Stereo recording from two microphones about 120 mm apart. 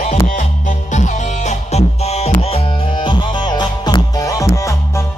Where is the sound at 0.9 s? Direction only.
80° left; by 2.6 s 60° left (ahead or behind).